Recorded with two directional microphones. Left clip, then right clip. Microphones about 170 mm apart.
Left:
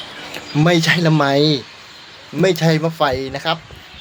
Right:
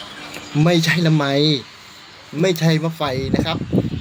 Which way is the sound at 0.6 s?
10° right (ahead or behind).